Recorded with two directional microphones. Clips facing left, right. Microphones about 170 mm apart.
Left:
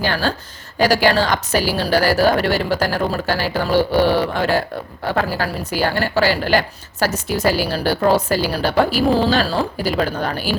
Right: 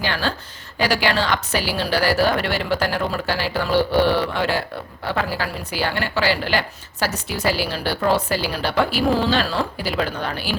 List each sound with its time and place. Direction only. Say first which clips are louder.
0.0 s a woman's voice: left 4 dB; 40° left (ahead or behind)